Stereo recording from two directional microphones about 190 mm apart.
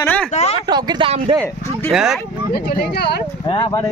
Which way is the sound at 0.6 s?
20° right (ahead or behind).